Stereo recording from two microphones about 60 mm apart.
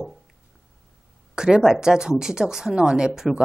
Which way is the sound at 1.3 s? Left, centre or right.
Centre.